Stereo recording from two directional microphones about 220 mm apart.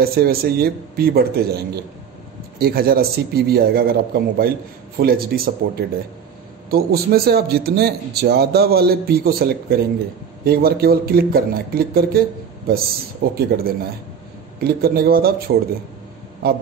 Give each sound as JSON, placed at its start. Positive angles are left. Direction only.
{"t": 0.0, "sound": "a man's voice", "side_deg": -45}